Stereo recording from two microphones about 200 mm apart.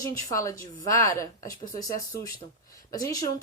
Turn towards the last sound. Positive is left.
turn(degrees=15)  # may be behind; listen again after turning